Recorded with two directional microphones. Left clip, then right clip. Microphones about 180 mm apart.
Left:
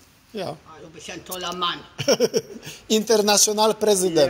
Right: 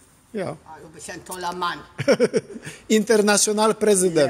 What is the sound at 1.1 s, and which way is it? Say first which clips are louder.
Speech: right 1 dB; 25° right (ahead or behind).